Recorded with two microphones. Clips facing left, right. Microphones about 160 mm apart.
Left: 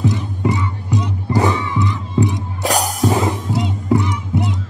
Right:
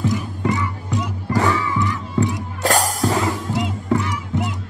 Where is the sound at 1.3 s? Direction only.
20° left (ahead or behind).